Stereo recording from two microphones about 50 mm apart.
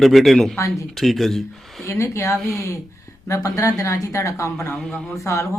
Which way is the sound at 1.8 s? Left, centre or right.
Left.